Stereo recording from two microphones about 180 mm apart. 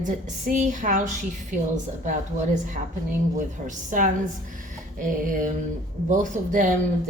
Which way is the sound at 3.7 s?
50° right (ahead or behind).